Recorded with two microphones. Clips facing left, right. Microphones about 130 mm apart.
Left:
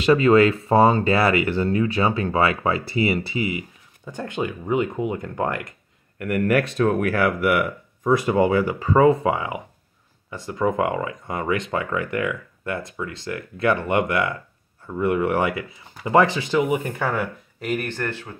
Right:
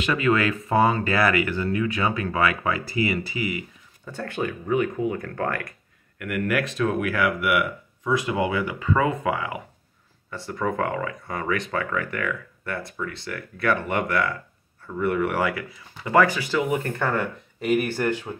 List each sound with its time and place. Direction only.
0.0 s speech: 30° left (ahead or behind)
6.1 s speech: 35° left (ahead or behind); by 18.3 s 15° right (ahead or behind)